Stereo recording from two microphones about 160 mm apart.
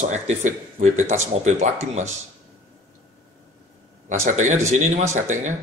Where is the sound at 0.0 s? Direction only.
45° right (ahead or behind).